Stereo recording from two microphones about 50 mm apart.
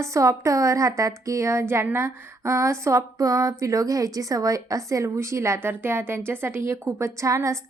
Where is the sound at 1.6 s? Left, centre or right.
Right.